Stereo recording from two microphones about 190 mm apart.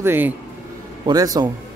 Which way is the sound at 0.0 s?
10° right (ahead or behind).